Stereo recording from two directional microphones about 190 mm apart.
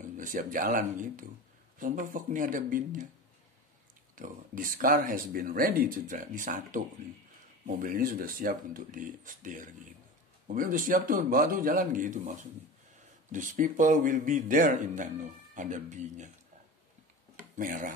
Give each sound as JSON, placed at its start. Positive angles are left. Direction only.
{"t": 0.2, "sound": "speech", "side_deg": -45}
{"t": 4.1, "sound": "speech", "side_deg": -45}
{"t": 17.4, "sound": "speech", "side_deg": -45}